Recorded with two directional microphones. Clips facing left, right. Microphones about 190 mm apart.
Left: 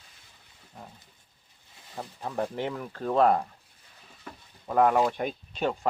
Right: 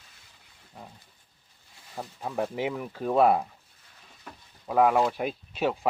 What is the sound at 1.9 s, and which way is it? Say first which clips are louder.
Speech: right 1 dB; 5° right (ahead or behind).